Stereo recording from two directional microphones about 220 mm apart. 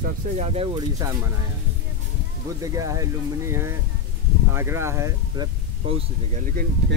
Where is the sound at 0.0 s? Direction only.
30° right (ahead or behind).